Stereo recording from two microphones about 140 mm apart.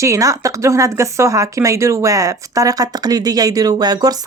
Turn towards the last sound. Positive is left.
turn(degrees=-30)  # may be behind; listen again after turning